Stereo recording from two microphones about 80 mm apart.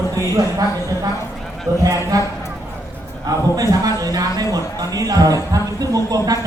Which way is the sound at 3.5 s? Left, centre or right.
Right.